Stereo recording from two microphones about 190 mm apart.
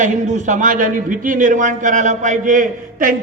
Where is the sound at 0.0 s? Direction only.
40° right (ahead or behind).